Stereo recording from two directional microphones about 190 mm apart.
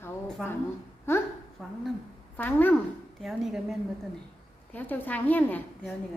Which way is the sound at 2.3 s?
10° left (ahead or behind).